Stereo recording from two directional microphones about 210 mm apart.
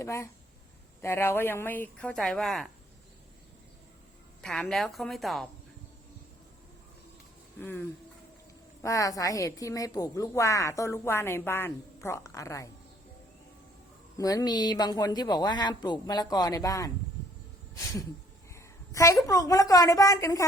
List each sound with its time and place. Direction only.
0.0 s a woman's voice: 15° left (ahead or behind)
4.4 s a woman's voice: 5° left (ahead or behind)
7.6 s a woman's voice: 10° left (ahead or behind)
14.2 s a woman's voice: 15° left (ahead or behind)